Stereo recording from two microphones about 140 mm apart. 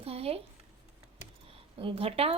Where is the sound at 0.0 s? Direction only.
45° right (ahead or behind).